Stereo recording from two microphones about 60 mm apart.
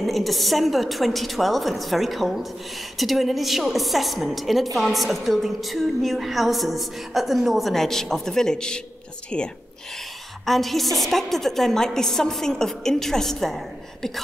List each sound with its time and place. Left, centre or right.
0.0 s a woman's voice: centre
10.4 s a woman's voice: centre